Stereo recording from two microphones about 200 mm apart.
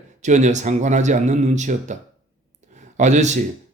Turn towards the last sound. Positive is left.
turn(degrees=-35)  # may be behind; listen again after turning